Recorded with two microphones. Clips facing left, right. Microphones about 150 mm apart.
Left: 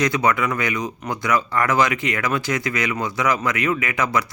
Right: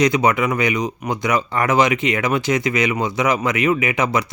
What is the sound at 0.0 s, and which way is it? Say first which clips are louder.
Speech: right 3 dB; 20° right (ahead or behind).